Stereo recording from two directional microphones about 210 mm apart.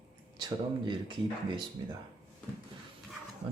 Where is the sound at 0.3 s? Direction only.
20° right (ahead or behind).